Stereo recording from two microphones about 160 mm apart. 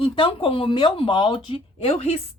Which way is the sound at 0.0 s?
35° left (ahead or behind).